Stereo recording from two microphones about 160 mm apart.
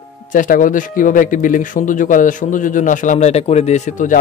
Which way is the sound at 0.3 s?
55° left (ahead or behind).